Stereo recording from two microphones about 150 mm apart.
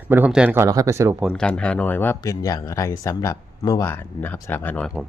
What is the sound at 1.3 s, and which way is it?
Speech, 5° left (ahead or behind).